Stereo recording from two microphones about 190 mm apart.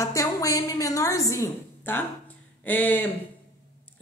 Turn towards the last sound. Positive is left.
turn(degrees=10)  # may be behind; listen again after turning